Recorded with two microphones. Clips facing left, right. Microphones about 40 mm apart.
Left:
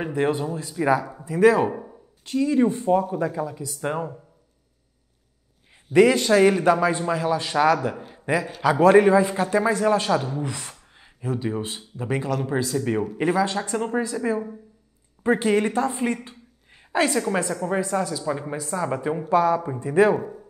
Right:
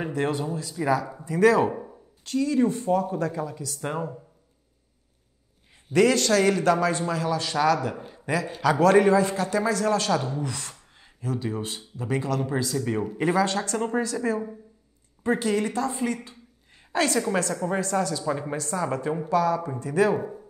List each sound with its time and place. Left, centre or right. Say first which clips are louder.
0.0 s a man's voice: left 3 dB; centre
1.1 s speech: left 1 dB; centre
2.2 s speech: left 2 dB; centre
5.9 s a man's voice: left 4 dB; centre
8.1 s a sound: left 4 dB; left
8.6 s a man's voice: left 3 dB; centre
15.2 s a man's voice: left 4 dB; left
16.9 s a woman's voice: left 2 dB; centre
19.2 s a man's voice: left 4 dB; left